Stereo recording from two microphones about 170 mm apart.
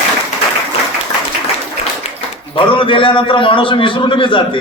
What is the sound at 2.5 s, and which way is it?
A man's voice, 30° left (ahead or behind).